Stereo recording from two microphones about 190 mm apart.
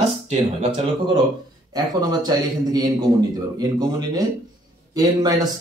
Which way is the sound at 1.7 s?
20° right (ahead or behind).